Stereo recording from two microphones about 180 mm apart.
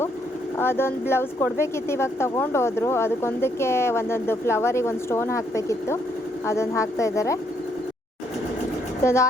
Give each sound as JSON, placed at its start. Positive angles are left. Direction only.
{"t": 0.6, "sound": "a woman's voice", "side_deg": 15}
{"t": 9.0, "sound": "a woman's voice", "side_deg": 15}